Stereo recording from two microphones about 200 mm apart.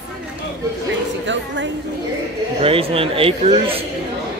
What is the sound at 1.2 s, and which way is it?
Speech, 65° right (ahead or behind).